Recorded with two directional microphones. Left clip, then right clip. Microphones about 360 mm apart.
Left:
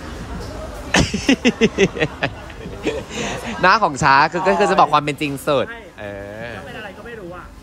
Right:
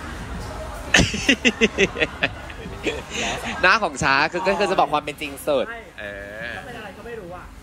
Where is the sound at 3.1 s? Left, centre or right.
Left.